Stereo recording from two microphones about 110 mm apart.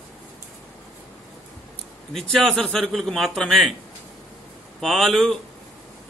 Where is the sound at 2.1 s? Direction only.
5° left (ahead or behind).